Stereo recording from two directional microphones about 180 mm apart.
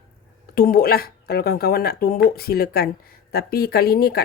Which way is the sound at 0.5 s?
55° left (ahead or behind).